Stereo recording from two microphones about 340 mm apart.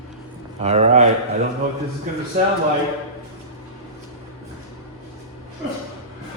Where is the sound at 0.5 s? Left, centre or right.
Centre.